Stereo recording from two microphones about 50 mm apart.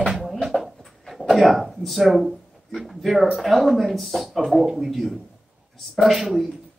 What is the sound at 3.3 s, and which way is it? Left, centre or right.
Speech, centre.